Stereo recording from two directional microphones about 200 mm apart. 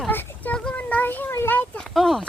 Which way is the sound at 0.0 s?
10° left (ahead or behind).